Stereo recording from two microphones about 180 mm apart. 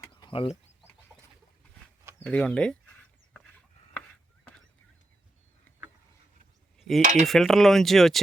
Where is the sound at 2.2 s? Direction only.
5° left (ahead or behind).